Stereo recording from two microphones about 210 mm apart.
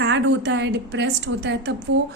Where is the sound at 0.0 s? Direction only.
60° right (ahead or behind).